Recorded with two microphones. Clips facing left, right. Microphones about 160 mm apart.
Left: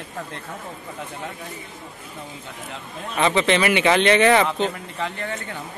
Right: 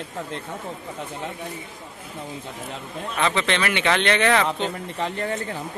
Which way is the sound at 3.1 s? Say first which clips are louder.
Left 4 dB; 5° left (ahead or behind).